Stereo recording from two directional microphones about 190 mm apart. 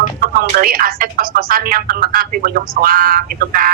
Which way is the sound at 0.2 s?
50° right (ahead or behind).